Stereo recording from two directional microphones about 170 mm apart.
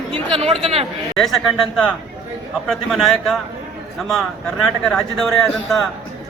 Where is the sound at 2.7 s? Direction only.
Centre (ahead or behind).